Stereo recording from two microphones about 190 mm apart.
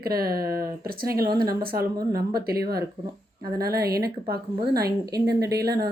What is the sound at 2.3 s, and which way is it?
A woman's voice, 55° right (ahead or behind).